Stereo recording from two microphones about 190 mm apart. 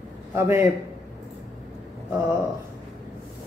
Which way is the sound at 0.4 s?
15° right (ahead or behind).